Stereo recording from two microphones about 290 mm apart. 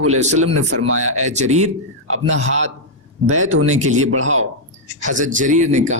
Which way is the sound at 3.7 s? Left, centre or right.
Right.